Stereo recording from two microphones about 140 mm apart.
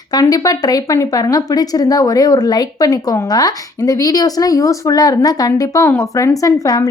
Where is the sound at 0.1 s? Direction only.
25° left (ahead or behind).